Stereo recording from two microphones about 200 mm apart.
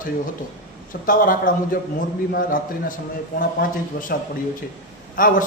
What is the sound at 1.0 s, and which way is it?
Speech, 45° left (ahead or behind).